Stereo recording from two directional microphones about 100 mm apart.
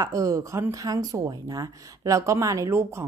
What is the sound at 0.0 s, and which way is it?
Speech, 35° right (ahead or behind).